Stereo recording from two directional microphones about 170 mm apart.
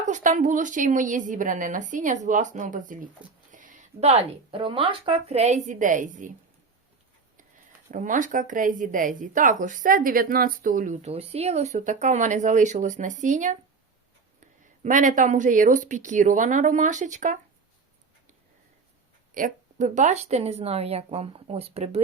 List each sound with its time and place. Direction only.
0.1 s speech: 50° right (ahead or behind)
7.9 s speech: 50° right (ahead or behind)
14.8 s speech: 50° right (ahead or behind)
19.3 s speech: 50° right (ahead or behind)